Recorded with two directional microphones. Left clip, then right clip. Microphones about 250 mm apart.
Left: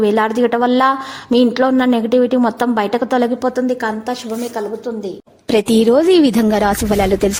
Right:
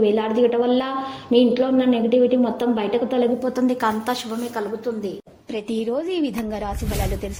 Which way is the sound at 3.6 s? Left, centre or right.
Centre.